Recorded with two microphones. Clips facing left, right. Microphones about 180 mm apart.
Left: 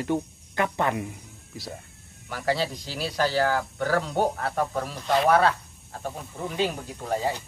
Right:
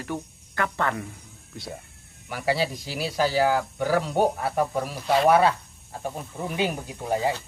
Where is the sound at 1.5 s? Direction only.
Centre (ahead or behind).